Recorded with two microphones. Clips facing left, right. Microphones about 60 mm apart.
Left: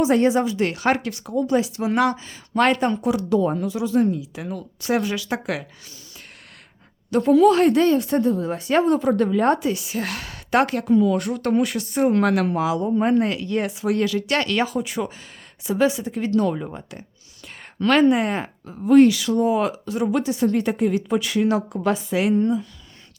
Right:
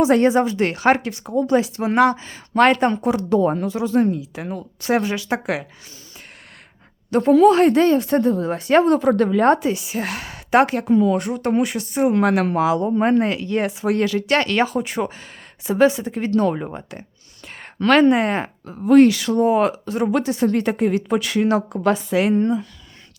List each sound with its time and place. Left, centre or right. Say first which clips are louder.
0.0 s speech: right 3 dB; right
0.3 s speech: right 2 dB; right
7.1 s speech: right 2 dB; right
9.6 s a woman's voice: right 2 dB; right
11.9 s speech: right 1 dB; centre
12.2 s a woman's voice: right 2 dB; right
12.5 s speech: right 3 dB; right
17.7 s speech: right 2 dB; right
22.3 s speech: left 2 dB; right